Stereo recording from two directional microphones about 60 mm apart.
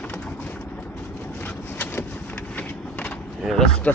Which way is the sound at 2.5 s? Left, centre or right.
Left.